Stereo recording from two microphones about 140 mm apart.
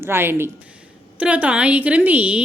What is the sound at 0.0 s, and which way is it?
A woman's voice, 15° right (ahead or behind).